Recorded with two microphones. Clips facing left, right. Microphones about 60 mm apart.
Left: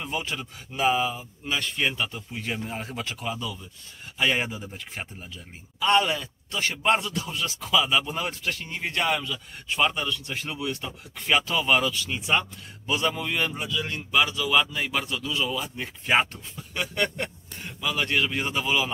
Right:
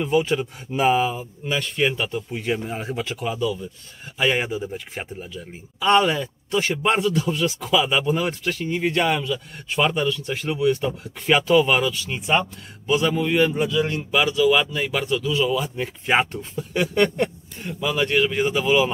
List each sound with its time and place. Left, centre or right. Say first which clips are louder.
0.0 s speech: right 11 dB; centre
0.3 s speech: right 10 dB; centre
1.5 s speech: right 5 dB; centre
6.1 s speech: right 8 dB; centre
6.8 s speech: even; centre
8.1 s a man's voice: right 7 dB; centre
13.7 s speech: right 8 dB; right
14.1 s speech: right 4 dB; centre